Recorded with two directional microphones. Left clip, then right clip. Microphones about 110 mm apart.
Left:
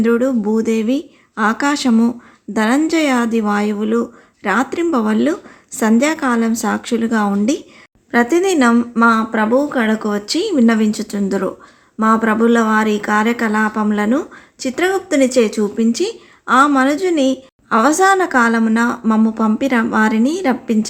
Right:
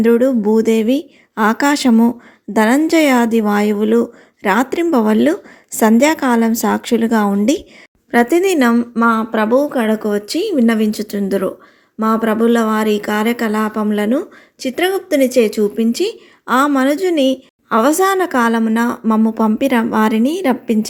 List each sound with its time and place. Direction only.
0.0 s speech: 40° right (ahead or behind)
8.1 s speech: 30° right (ahead or behind)
8.7 s speech: 15° right (ahead or behind)
9.5 s speech: 25° right (ahead or behind)